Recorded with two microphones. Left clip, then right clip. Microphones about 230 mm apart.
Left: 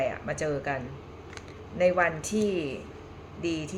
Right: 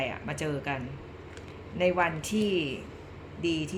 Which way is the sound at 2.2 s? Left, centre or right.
Left.